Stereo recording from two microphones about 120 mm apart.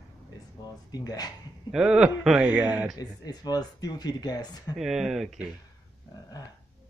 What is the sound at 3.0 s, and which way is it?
Speech, 35° left (ahead or behind).